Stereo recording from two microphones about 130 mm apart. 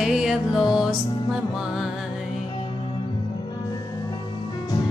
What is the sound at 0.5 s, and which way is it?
Music, 30° left (ahead or behind).